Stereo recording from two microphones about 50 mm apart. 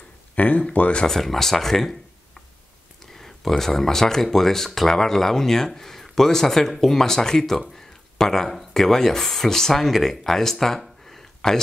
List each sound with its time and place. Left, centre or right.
0.4 s speech: left
1.0 s speech: centre
7.7 s a sound: centre
8.5 s speech: centre